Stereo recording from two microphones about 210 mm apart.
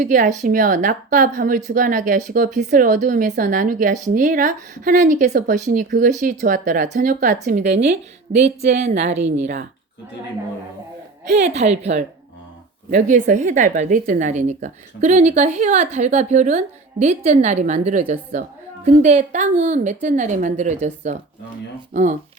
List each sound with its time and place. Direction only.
0.0 s a woman's voice: 40° right (ahead or behind)
11.3 s a woman's voice: 30° right (ahead or behind)